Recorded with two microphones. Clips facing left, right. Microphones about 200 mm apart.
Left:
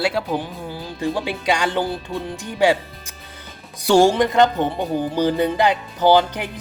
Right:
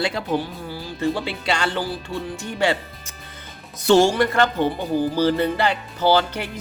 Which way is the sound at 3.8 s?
15° left (ahead or behind).